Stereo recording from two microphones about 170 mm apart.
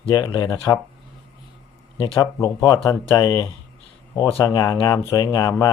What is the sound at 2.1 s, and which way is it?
Speech, 20° left (ahead or behind).